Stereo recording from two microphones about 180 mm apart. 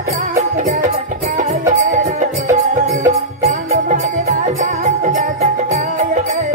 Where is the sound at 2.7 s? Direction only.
45° right (ahead or behind).